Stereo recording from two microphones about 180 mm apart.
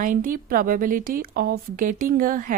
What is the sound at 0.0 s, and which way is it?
A woman's voice, 50° right (ahead or behind).